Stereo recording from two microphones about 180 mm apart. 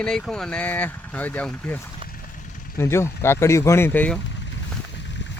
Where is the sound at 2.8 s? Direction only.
15° left (ahead or behind).